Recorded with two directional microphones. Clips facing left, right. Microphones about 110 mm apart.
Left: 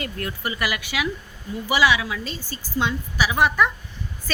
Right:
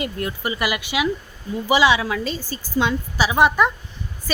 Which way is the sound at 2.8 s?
90° right.